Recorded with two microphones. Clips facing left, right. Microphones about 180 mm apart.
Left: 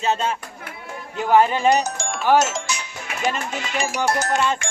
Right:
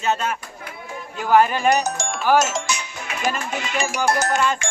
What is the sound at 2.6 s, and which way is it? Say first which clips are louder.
Music: right 2 dB; 70° right (ahead or behind).